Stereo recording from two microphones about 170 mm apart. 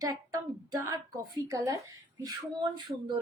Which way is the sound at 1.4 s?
20° right (ahead or behind).